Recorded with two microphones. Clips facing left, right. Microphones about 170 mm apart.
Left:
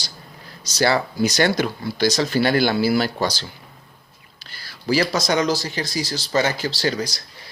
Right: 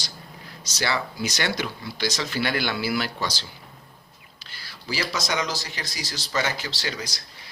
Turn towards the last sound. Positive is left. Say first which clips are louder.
# left 9 dB
turn(degrees=35)  # may be behind; listen again after turning